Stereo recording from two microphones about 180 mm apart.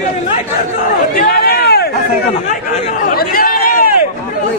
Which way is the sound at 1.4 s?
60° left (ahead or behind).